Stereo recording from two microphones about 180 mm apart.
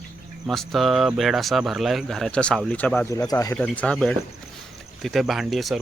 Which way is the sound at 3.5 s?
5° left (ahead or behind).